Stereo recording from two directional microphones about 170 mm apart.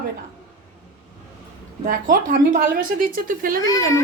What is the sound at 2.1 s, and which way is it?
Speech, 55° right (ahead or behind).